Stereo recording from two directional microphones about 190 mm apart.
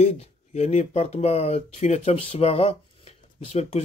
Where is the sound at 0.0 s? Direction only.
35° left (ahead or behind).